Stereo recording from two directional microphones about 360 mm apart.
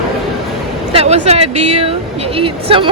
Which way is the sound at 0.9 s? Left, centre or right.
Centre.